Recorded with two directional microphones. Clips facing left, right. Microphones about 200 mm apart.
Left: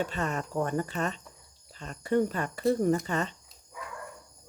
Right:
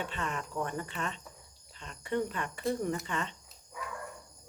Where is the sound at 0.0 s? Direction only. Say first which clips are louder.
Left 6 dB; 40° left (ahead or behind).